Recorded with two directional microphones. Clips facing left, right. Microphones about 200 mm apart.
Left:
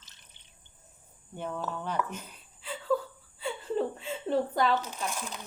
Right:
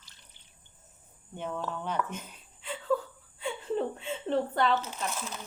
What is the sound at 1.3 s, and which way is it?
Speech, 5° left (ahead or behind).